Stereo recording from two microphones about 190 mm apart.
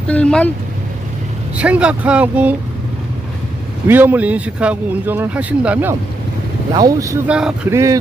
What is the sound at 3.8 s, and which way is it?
Speech, 10° right (ahead or behind).